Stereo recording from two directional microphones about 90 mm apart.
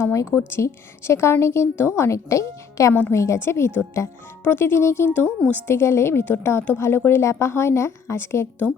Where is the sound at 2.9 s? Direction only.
20° left (ahead or behind).